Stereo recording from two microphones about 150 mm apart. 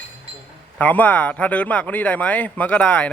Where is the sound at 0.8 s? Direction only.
10° left (ahead or behind).